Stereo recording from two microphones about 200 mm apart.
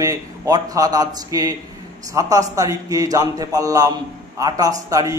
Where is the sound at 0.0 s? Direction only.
15° right (ahead or behind).